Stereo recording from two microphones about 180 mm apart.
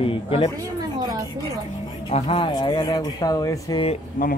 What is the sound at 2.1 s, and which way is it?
Speech, 30° left (ahead or behind).